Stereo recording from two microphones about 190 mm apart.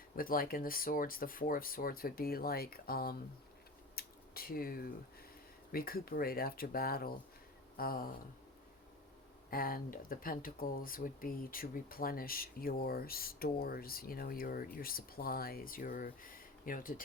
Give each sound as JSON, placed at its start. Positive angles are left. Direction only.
{"t": 0.2, "sound": "speech", "side_deg": 50}
{"t": 3.9, "sound": "finger snapping", "side_deg": 50}
{"t": 5.7, "sound": "speech", "side_deg": 50}
{"t": 9.5, "sound": "speech", "side_deg": 50}